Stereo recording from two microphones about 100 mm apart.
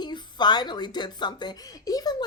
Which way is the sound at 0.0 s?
45° left (ahead or behind).